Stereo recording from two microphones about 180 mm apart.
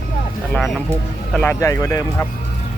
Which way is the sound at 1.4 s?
15° left (ahead or behind).